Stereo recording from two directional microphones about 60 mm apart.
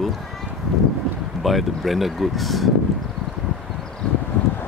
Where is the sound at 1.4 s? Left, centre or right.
Centre.